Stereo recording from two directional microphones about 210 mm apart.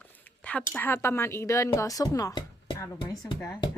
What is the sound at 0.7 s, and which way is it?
Speech, 5° left (ahead or behind).